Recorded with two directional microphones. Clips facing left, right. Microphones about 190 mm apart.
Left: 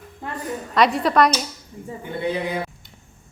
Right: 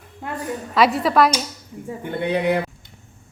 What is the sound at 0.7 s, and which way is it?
Speech, centre (ahead or behind).